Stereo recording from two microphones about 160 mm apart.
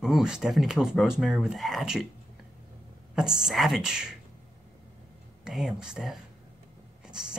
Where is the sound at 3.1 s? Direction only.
5° right (ahead or behind).